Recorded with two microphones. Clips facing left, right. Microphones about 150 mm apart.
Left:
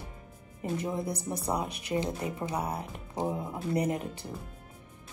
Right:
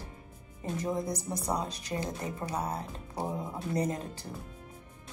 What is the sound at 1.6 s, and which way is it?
Speech, 20° left (ahead or behind).